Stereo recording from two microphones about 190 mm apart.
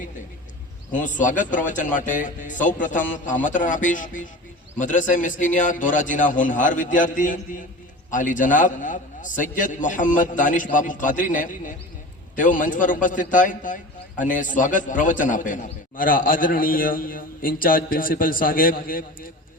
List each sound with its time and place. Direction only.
0.9 s a man's voice: 40° left (ahead or behind)